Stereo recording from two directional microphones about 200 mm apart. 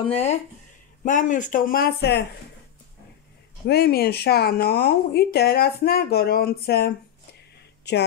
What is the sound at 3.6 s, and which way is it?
Speech, 50° left (ahead or behind).